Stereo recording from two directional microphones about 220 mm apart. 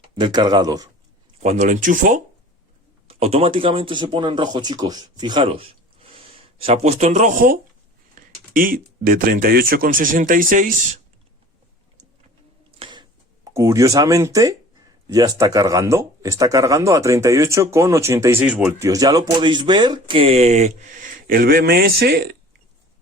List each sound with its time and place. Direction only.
0.2 s speech: 20° right (ahead or behind)
1.4 s speech: 30° right (ahead or behind)
12.8 s a sound: 20° right (ahead or behind)
15.0 s speech: 15° right (ahead or behind); by 22.4 s 45° right (ahead or behind)